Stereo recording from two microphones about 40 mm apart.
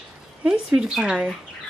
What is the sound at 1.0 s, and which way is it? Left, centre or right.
Speech, right.